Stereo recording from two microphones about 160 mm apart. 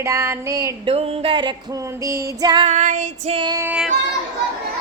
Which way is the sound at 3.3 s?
30° right (ahead or behind).